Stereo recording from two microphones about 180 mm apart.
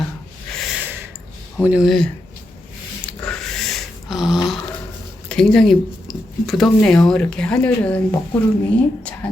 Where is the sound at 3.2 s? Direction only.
5° left (ahead or behind).